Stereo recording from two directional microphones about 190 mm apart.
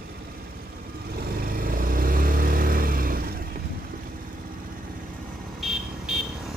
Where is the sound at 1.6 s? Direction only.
50° right (ahead or behind).